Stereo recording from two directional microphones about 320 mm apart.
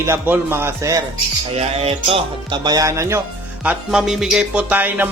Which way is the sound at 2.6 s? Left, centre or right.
Centre.